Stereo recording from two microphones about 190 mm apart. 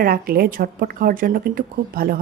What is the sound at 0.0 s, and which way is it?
A woman's voice, 50° right (ahead or behind).